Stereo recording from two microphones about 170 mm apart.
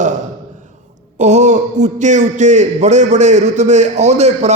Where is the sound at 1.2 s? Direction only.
40° right (ahead or behind).